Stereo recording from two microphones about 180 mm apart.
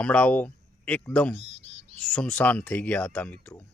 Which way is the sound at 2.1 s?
5° left (ahead or behind).